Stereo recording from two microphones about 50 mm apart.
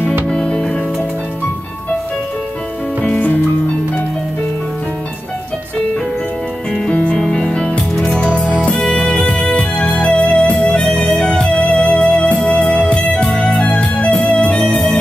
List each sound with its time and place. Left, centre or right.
0.3 s music: centre
3.0 s music: left
6.9 s music: left